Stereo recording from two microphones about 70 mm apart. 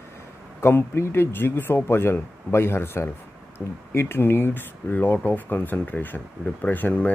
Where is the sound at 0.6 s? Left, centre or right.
Left.